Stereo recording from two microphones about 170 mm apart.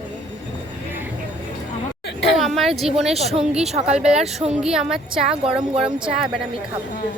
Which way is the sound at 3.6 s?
40° right (ahead or behind).